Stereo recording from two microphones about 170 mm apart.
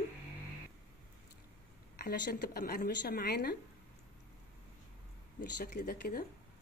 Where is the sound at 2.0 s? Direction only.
65° left (ahead or behind).